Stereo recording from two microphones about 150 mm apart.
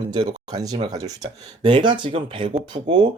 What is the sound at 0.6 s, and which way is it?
A man's voice, 25° right (ahead or behind).